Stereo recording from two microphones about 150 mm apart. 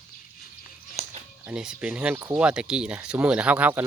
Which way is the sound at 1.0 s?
45° right (ahead or behind).